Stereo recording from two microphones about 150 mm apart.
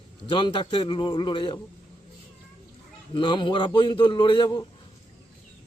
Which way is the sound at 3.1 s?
30° left (ahead or behind).